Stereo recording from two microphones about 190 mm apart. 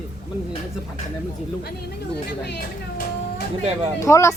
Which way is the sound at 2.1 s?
60° left (ahead or behind).